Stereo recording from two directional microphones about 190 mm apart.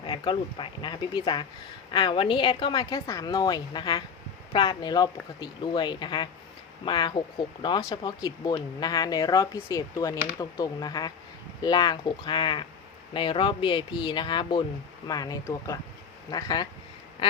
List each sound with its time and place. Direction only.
0.0 s speech: 25° left (ahead or behind)